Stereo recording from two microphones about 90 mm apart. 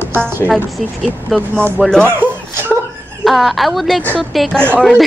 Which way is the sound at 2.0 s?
25° right (ahead or behind).